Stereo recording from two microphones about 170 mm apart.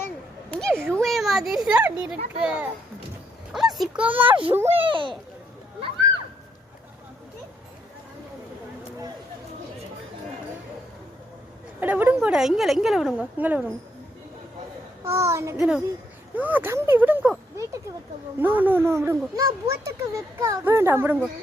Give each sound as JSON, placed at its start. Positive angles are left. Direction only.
{"t": 0.5, "sound": "a sound", "side_deg": 5}
{"t": 3.5, "sound": "a child's voice", "side_deg": 0}
{"t": 4.9, "sound": "a child's voice", "side_deg": -30}
{"t": 11.8, "sound": "a woman's voice", "side_deg": -10}
{"t": 15.0, "sound": "speech", "side_deg": -15}
{"t": 15.5, "sound": "a woman's voice", "side_deg": -5}